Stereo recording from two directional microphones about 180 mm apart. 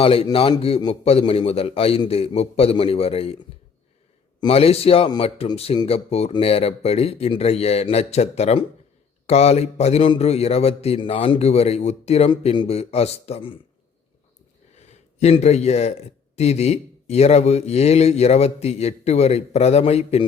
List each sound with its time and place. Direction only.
0.0 s a man's voice: 30° left (ahead or behind)
4.4 s a man's voice: 35° left (ahead or behind)
14.8 s a man's voice: 35° left (ahead or behind)